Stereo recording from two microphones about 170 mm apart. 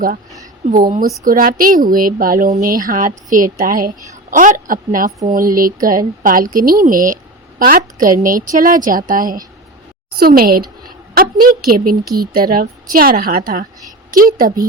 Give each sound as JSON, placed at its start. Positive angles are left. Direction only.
{"t": 1.2, "sound": "a woman's voice", "side_deg": -55}